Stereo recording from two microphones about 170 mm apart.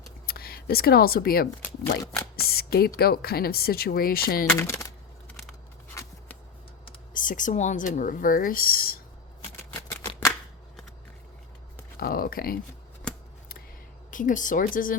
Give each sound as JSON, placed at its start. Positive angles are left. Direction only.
{"t": 0.3, "sound": "speech", "side_deg": 65}
{"t": 4.4, "sound": "a sound", "side_deg": 15}
{"t": 7.1, "sound": "speech", "side_deg": 50}
{"t": 11.9, "sound": "speech", "side_deg": 60}
{"t": 13.0, "sound": "scissors", "side_deg": 5}
{"t": 14.1, "sound": "speech", "side_deg": 50}